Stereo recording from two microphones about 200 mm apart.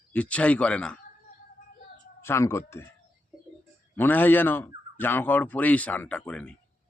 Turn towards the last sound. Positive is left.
turn(degrees=5)  # may be behind; listen again after turning